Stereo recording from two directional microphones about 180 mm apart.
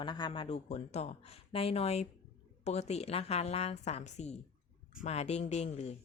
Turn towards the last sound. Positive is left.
turn(degrees=35)  # may be behind; listen again after turning